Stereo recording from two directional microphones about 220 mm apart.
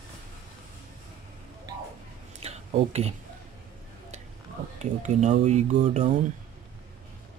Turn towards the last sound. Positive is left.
turn(degrees=-35)  # may be behind; listen again after turning